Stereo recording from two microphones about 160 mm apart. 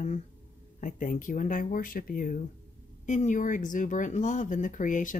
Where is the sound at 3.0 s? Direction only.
50° left (ahead or behind).